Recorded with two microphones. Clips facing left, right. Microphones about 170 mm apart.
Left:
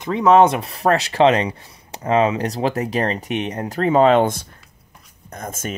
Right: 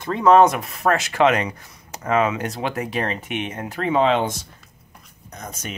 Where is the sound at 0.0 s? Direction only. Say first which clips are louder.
Left 1 dB; 20° left (ahead or behind).